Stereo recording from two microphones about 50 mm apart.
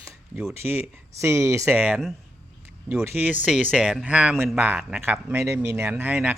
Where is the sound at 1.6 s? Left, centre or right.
Right.